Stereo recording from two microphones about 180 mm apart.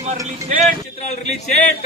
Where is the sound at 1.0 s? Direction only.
40° left (ahead or behind).